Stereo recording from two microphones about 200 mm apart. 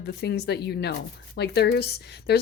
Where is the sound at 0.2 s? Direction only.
55° left (ahead or behind).